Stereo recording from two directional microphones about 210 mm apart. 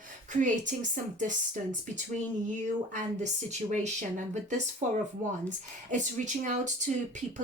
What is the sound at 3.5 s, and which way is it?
Speech, 35° right (ahead or behind).